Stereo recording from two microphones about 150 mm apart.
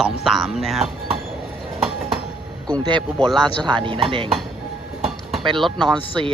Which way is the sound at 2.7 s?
30° right (ahead or behind).